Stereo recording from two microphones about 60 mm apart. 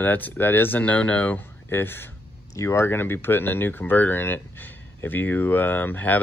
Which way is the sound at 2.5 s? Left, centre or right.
Left.